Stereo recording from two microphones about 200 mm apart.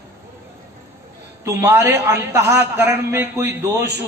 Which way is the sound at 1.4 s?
15° right (ahead or behind).